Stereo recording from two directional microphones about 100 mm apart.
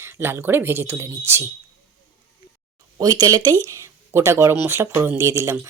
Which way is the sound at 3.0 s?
40° right (ahead or behind).